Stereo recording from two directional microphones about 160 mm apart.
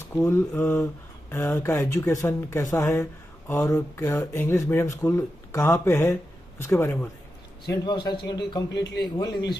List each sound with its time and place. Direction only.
0.2 s speech: 15° left (ahead or behind)
7.7 s a man's voice: 25° left (ahead or behind)
8.7 s a man's voice: 90° left
9.1 s a man's voice: 25° left (ahead or behind)